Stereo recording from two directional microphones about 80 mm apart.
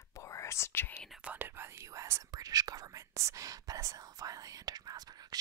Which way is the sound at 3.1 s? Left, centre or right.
Right.